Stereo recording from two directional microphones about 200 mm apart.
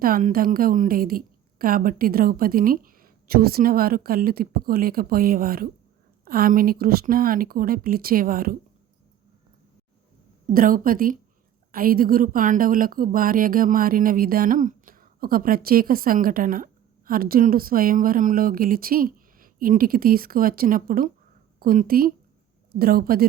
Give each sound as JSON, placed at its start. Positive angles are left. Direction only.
{"t": 0.0, "sound": "a woman's voice", "side_deg": -45}
{"t": 10.5, "sound": "a woman's voice", "side_deg": -45}